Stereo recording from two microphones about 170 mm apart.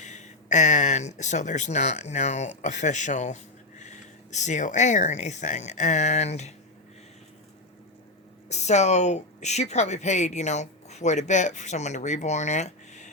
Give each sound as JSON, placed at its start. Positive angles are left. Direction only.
{"t": 0.0, "sound": "speech", "side_deg": 45}
{"t": 8.4, "sound": "speech", "side_deg": 40}